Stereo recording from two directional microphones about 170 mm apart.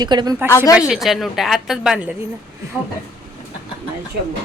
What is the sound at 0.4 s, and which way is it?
Speech, 20° left (ahead or behind).